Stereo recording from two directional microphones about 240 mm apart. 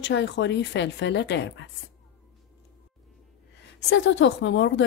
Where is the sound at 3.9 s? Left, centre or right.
Left.